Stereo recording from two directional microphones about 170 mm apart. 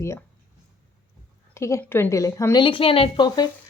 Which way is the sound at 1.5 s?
15° left (ahead or behind).